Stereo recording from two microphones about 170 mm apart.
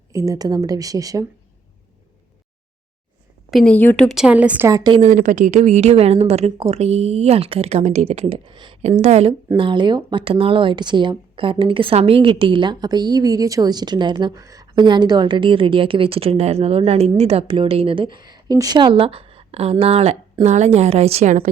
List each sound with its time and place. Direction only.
0.1 s speech: 20° right (ahead or behind)
3.5 s a woman's voice: 5° left (ahead or behind); by 4.8 s 10° right (ahead or behind)
4.8 s speech: 30° right (ahead or behind)
5.0 s a woman's voice: 50° right (ahead or behind); by 8.8 s 30° right (ahead or behind)
8.8 s a woman's voice: 40° right (ahead or behind)
9.6 s a woman's voice: 30° right (ahead or behind)